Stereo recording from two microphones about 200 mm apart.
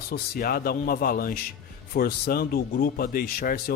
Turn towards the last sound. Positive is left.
turn(degrees=45)  # may be behind; listen again after turning